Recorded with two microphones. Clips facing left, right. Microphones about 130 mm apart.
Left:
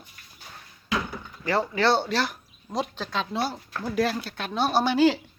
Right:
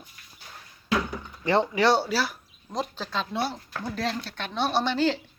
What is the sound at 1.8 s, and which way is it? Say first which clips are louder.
Speech: even; 10° right (ahead or behind).